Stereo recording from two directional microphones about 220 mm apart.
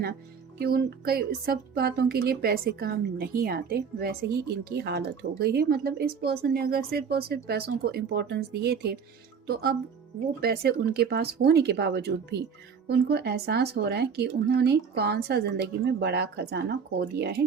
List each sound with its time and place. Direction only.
0.6 s speech: 45° right (ahead or behind)